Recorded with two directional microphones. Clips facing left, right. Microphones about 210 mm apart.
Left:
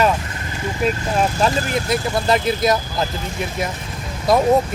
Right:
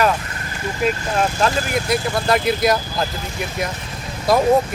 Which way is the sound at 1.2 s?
5° left (ahead or behind).